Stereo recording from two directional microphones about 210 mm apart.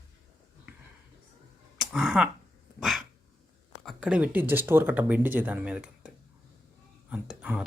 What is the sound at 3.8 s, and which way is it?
Speech, 5° right (ahead or behind).